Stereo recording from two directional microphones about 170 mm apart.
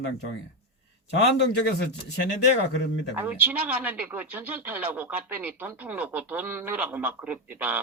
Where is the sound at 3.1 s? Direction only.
10° right (ahead or behind).